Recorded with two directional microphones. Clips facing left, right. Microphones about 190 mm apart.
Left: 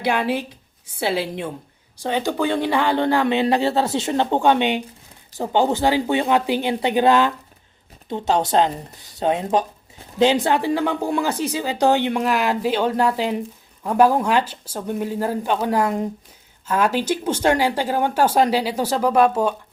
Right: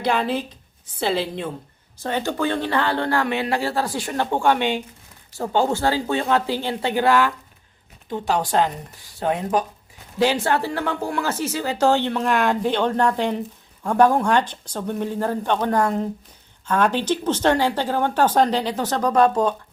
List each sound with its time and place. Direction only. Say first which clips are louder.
0.0 s speech: left 1 dB; 10° left (ahead or behind)